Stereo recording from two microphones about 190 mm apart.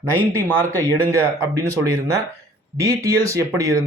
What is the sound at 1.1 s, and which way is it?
Speech, 15° right (ahead or behind).